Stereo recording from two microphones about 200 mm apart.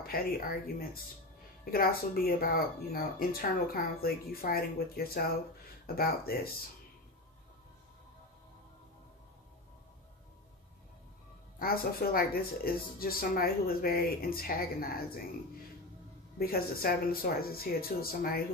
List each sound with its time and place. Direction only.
0.0 s speech: 50° left (ahead or behind)
11.6 s speech: 50° left (ahead or behind)
16.3 s speech: 50° left (ahead or behind)